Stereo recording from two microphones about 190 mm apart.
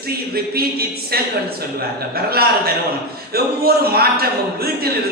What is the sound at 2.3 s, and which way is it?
Speech, 55° right (ahead or behind).